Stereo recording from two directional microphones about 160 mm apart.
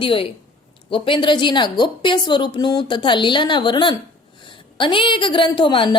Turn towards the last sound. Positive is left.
turn(degrees=30)  # may be behind; listen again after turning